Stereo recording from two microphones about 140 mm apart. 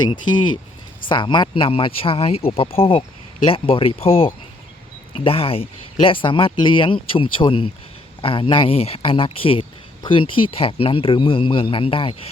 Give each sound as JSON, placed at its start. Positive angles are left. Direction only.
{"t": 0.0, "sound": "speech", "side_deg": 35}